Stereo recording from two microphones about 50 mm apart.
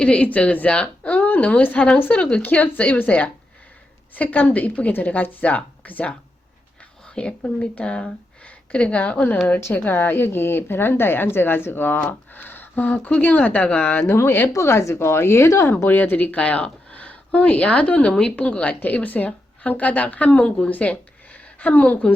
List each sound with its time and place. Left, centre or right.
0.0 s a woman's voice: left
7.2 s speech: left
9.9 s a woman's voice: left
14.0 s speech: left
14.5 s speech: left
15.9 s speech: left
18.1 s a woman's voice: centre
18.3 s a woman's voice: left